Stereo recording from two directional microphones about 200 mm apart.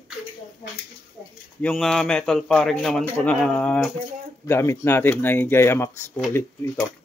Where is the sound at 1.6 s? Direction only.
5° left (ahead or behind).